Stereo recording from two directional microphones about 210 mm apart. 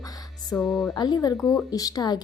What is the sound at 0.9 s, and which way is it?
A woman's voice, 20° left (ahead or behind).